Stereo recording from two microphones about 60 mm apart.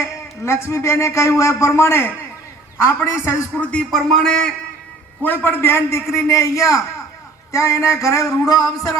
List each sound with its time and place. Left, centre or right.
0.0 s a man's voice: left
3.6 s speech: left
3.9 s a man's voice: centre
5.2 s a man's voice: left